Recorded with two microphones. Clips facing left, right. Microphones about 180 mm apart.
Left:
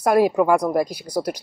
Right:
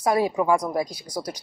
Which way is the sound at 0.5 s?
60° left (ahead or behind).